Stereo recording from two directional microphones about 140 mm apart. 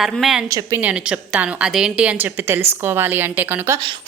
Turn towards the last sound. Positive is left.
turn(degrees=-20)  # may be behind; listen again after turning